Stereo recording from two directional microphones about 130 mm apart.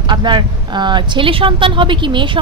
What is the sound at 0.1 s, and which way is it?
Speech, 35° right (ahead or behind).